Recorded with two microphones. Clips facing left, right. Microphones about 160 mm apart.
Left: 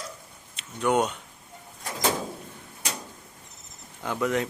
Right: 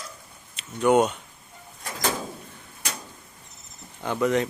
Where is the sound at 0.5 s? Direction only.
5° right (ahead or behind).